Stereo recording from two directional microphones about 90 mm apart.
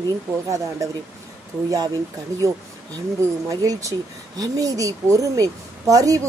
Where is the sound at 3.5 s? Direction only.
40° right (ahead or behind).